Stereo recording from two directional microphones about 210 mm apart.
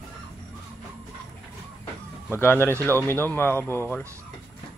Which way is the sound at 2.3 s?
10° left (ahead or behind).